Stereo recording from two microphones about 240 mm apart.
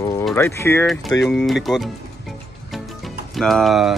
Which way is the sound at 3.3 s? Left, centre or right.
Centre.